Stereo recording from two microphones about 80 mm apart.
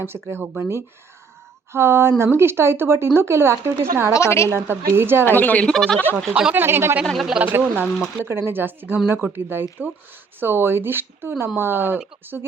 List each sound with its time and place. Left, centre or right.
0.0 s speech: right
4.1 s a woman's voice: left
4.5 s speech: right
5.2 s speech: left
5.7 s speech: centre
6.5 s speech: right
7.0 s speech: centre
7.3 s speech: right